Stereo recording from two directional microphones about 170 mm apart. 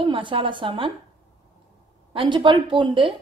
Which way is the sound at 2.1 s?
30° right (ahead or behind).